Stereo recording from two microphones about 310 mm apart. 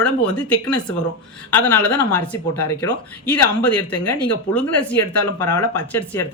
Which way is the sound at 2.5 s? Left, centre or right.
Left.